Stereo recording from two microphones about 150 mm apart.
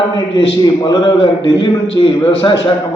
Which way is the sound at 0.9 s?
35° left (ahead or behind).